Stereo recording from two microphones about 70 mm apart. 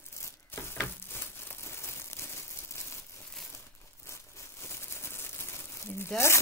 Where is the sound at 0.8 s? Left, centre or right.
Left.